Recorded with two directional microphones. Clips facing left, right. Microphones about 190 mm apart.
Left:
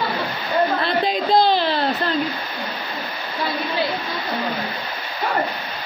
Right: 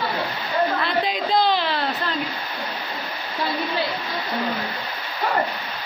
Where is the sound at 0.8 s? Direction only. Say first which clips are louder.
Left 3 dB; 30° left (ahead or behind).